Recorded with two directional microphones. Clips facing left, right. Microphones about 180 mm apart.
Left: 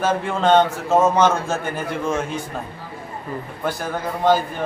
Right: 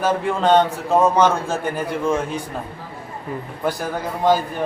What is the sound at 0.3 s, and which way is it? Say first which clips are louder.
A man's voice: even; 10° right (ahead or behind).